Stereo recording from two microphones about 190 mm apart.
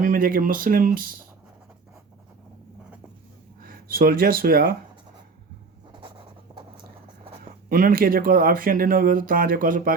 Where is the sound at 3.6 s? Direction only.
50° right (ahead or behind).